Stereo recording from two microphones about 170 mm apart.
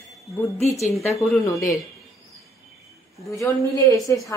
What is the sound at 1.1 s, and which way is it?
Speech, 20° left (ahead or behind).